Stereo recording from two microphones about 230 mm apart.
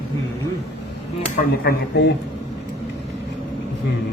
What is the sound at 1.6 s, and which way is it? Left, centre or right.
Speech, left.